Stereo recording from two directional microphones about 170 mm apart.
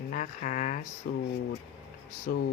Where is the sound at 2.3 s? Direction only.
55° left (ahead or behind).